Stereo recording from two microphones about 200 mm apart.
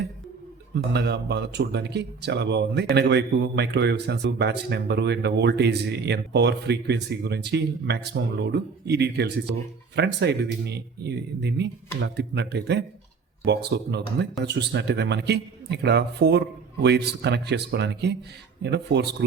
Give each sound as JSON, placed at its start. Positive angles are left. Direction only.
{"t": 0.7, "sound": "speech", "side_deg": -55}